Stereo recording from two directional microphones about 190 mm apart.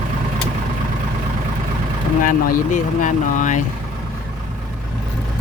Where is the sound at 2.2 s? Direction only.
45° left (ahead or behind).